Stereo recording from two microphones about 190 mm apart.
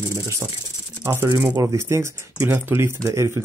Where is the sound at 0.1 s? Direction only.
15° right (ahead or behind).